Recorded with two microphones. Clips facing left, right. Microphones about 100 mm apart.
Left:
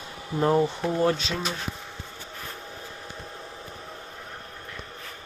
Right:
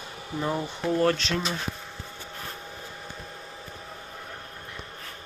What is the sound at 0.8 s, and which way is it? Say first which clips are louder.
Speech: even; 15° left (ahead or behind).